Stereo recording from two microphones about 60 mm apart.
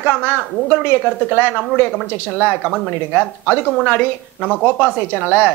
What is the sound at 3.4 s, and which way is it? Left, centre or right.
Speech, centre.